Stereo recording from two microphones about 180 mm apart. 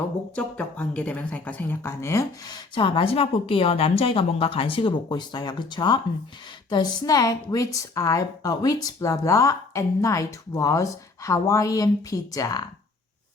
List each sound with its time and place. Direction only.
0.3 s a woman's voice: 5° left (ahead or behind)
2.7 s a woman's voice: 30° left (ahead or behind)